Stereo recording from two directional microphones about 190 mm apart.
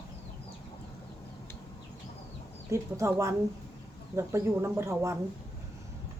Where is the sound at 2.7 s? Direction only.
15° right (ahead or behind).